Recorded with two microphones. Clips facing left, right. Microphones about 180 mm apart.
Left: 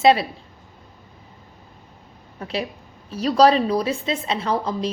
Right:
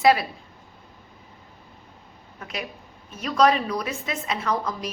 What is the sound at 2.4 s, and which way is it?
A woman's voice, 30° left (ahead or behind).